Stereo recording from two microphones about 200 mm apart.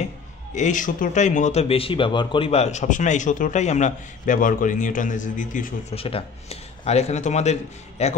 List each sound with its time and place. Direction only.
0.6 s speech: 40° left (ahead or behind)